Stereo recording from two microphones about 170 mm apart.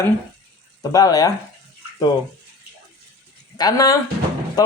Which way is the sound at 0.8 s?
20° left (ahead or behind).